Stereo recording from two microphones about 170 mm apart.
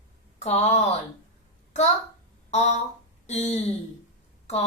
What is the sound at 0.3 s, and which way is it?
Speech, 40° left (ahead or behind).